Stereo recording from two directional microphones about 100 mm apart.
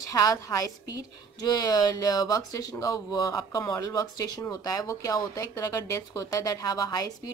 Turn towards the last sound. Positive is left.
turn(degrees=40)  # may be behind; listen again after turning